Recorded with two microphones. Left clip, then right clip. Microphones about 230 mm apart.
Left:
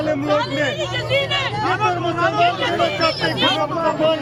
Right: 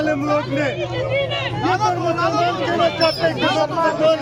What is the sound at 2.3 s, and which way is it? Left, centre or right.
Speech, left.